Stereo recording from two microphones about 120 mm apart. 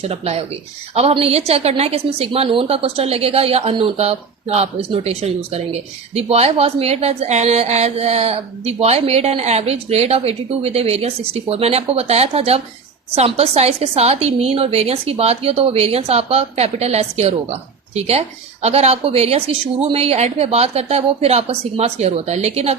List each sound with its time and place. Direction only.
0.0 s a woman's voice: 60° right (ahead or behind)